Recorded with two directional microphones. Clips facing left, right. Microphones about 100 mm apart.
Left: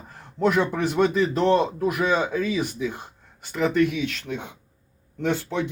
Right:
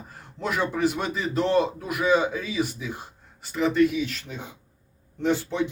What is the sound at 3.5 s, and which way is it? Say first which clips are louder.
Speech: even; centre (ahead or behind).